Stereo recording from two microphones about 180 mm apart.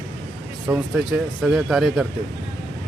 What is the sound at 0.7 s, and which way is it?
Speech, 10° right (ahead or behind).